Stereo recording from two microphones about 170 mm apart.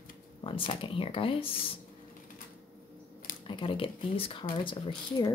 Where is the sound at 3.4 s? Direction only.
30° left (ahead or behind).